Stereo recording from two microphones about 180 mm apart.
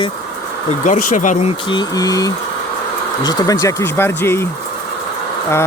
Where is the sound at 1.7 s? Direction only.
20° left (ahead or behind).